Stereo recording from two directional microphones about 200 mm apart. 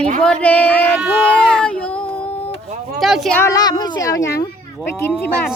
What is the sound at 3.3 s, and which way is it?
Speech, 15° left (ahead or behind).